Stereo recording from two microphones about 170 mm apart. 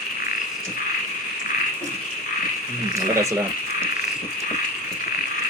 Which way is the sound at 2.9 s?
20° right (ahead or behind).